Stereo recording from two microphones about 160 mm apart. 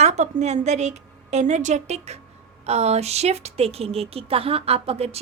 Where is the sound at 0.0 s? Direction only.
45° right (ahead or behind).